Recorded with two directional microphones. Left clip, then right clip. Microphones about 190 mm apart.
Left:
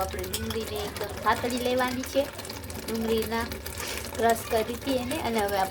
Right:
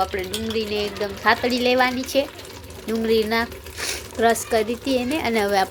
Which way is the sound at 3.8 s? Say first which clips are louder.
Right 6 dB; 15° right (ahead or behind).